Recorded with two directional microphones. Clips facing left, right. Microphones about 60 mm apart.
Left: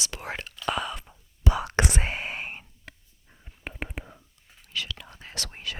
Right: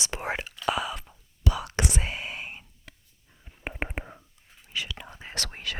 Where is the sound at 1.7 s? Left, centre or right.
Left.